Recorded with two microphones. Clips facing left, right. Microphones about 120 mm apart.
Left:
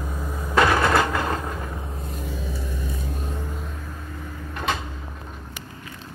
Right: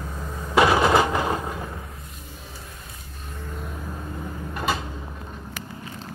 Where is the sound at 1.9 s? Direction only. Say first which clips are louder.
Left 8 dB; 30° left (ahead or behind).